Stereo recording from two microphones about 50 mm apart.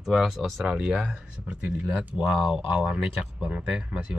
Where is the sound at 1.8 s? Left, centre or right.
Right.